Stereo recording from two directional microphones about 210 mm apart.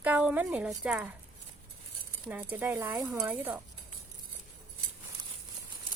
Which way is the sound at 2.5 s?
10° right (ahead or behind).